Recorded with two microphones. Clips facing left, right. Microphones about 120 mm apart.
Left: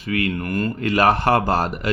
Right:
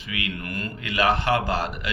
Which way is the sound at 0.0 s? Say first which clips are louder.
Left 9 dB; 45° left (ahead or behind).